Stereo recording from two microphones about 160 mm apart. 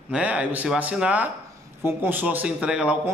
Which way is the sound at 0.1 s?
5° right (ahead or behind).